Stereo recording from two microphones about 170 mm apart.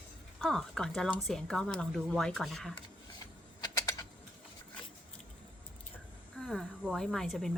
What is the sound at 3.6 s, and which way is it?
Typing, 20° left (ahead or behind).